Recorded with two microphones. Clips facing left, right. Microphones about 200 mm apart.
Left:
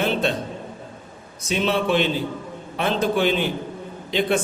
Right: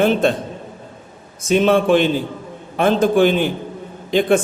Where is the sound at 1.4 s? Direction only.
50° right (ahead or behind).